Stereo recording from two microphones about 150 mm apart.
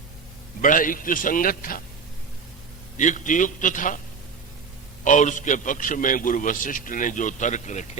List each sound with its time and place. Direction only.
0.6 s a man's voice: 60° left (ahead or behind)
3.0 s a man's voice: 55° left (ahead or behind)
5.0 s a man's voice: 60° left (ahead or behind)